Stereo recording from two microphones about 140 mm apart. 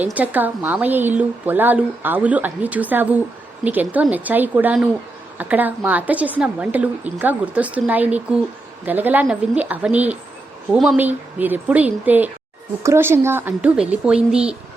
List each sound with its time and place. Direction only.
0.0 s a woman's voice: 10° right (ahead or behind)